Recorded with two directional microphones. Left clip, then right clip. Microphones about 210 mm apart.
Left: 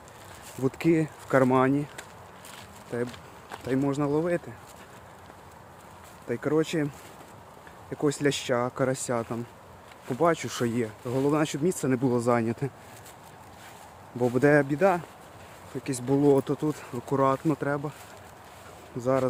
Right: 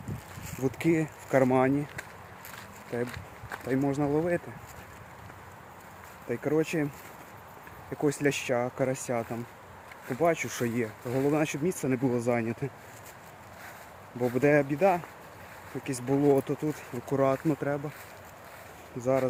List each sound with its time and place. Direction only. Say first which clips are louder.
0.6 s speech: left 3 dB; 15° left (ahead or behind)
3.5 s speech: left 1 dB; 5° left (ahead or behind)
6.2 s speech: left 2 dB; 10° left (ahead or behind)
7.9 s speech: left 1 dB; centre (ahead or behind); by 12.7 s 25° left (ahead or behind)
14.3 s speech: left 2 dB; 20° left (ahead or behind)
18.9 s speech: left 1 dB; 15° left (ahead or behind)